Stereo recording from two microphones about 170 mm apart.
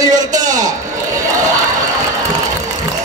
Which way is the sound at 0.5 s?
50° right (ahead or behind).